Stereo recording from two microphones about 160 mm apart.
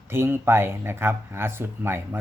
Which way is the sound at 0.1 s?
15° right (ahead or behind).